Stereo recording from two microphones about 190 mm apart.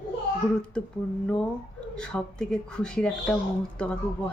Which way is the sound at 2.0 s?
5° left (ahead or behind).